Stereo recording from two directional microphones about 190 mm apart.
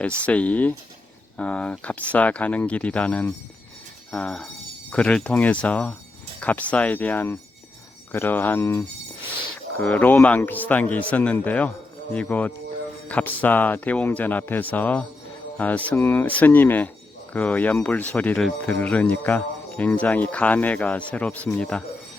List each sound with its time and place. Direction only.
0.2 s speech: 5° left (ahead or behind)